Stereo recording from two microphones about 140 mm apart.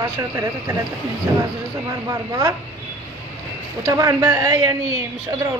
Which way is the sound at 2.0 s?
20° right (ahead or behind).